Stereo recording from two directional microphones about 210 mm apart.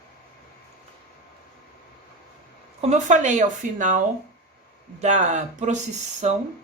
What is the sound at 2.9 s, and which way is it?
Speech, 35° right (ahead or behind).